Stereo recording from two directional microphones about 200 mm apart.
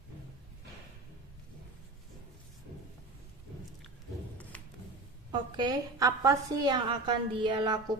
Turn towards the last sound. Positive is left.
turn(degrees=-20)  # may be behind; listen again after turning